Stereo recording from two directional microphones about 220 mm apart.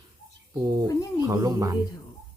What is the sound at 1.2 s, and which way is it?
Speech, 15° right (ahead or behind).